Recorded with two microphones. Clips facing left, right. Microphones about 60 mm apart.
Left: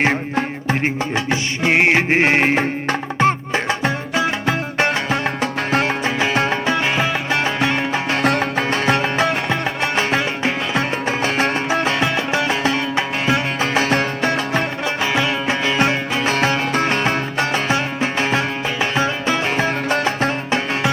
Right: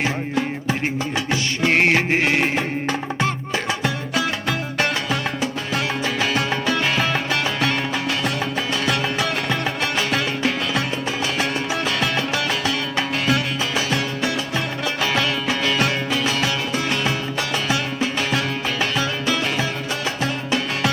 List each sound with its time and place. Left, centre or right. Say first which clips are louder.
0.0 s music: left 4 dB; left
1.6 s music: left 2 dB; centre
8.1 s music: left 5 dB; left
13.6 s music: left 5 dB; left
14.8 s music: even; left
16.3 s music: left 5 dB; left